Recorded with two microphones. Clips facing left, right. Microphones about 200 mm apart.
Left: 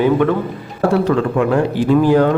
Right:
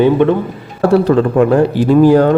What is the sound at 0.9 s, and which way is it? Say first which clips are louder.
Speech: right 6 dB; 35° right (ahead or behind).